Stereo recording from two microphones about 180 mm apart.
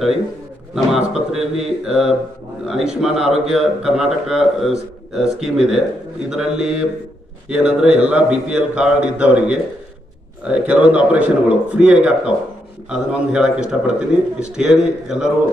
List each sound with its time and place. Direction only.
0.7 s a man's voice: 5° right (ahead or behind)